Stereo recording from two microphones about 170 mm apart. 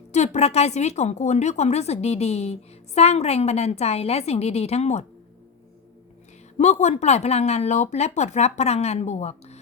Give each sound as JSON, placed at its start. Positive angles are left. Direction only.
{"t": 0.1, "sound": "a woman's voice", "side_deg": 40}
{"t": 6.6, "sound": "a woman's voice", "side_deg": 40}